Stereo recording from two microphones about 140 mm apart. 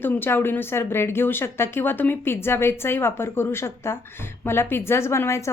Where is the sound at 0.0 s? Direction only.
15° left (ahead or behind).